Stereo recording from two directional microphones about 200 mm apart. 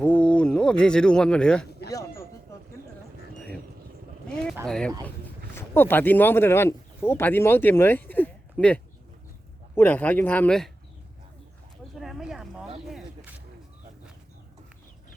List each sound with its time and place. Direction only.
0.0 s speech: 5° left (ahead or behind)
1.9 s a sound: 15° left (ahead or behind)
3.3 s vehicle: 5° left (ahead or behind)
4.6 s speech: 5° left (ahead or behind)
11.9 s a sound: centre (ahead or behind)
12.9 s snake: 10° right (ahead or behind)